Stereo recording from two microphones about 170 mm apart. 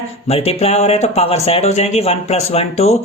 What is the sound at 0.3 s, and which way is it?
Speech, 35° left (ahead or behind).